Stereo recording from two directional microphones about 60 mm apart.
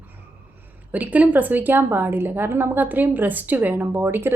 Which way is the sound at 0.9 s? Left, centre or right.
Right.